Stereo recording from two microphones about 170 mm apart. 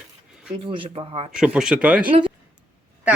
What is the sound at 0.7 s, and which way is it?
Speech, 30° right (ahead or behind).